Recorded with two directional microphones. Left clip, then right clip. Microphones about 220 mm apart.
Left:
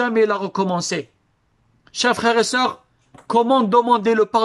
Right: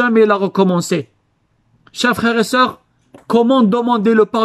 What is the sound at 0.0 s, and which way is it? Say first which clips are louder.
Speech: right 6 dB; 35° right (ahead or behind).